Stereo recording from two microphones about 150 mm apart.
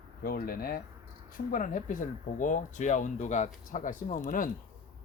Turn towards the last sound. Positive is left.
turn(degrees=60)  # may be behind; listen again after turning